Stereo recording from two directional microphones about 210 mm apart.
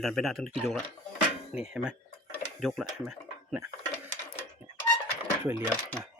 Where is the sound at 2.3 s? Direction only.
Centre (ahead or behind).